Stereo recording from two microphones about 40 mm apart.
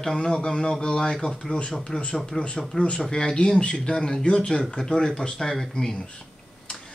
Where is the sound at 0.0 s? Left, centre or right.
Centre.